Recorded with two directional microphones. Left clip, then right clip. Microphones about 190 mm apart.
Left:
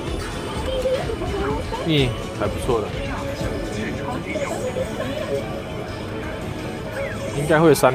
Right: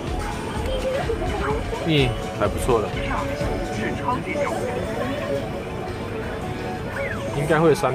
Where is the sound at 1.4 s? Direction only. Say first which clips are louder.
Even; centre (ahead or behind).